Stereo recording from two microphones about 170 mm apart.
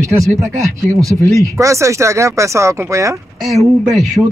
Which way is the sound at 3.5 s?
Centre (ahead or behind).